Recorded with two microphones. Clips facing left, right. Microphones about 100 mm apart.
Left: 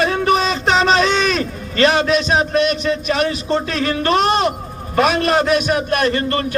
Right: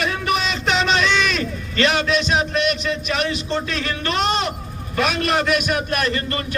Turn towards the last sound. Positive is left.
turn(degrees=35)  # may be behind; listen again after turning